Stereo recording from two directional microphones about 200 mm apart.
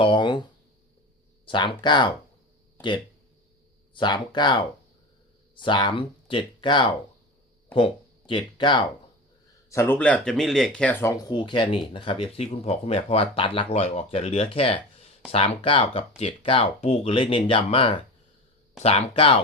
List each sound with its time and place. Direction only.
0.0 s a sound: 25° left (ahead or behind)
1.5 s speech: 25° left (ahead or behind)
3.9 s speech: 20° left (ahead or behind)
9.6 s speech: 10° left (ahead or behind); by 19.4 s 30° left (ahead or behind)